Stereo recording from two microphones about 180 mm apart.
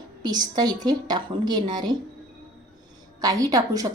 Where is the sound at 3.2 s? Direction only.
20° right (ahead or behind).